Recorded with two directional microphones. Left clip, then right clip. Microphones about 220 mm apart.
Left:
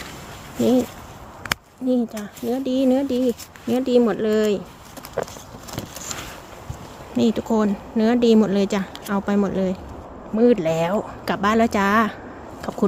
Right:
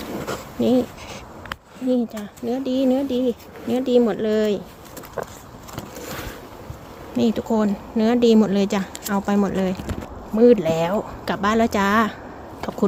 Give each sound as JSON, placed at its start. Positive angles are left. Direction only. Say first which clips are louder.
{"t": 0.6, "sound": "speech", "louder": "even", "side_deg": 0}
{"t": 1.9, "sound": "speech", "louder": "even", "side_deg": 5}
{"t": 5.2, "sound": "a sound", "louder": "left 3 dB", "side_deg": 15}
{"t": 7.2, "sound": "speech", "louder": "left 1 dB", "side_deg": 5}